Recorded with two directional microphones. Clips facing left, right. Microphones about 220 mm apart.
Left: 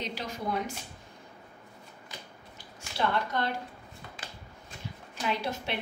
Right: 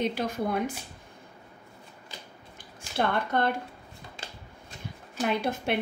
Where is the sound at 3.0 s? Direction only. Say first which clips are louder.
Right 3 dB; 55° right (ahead or behind).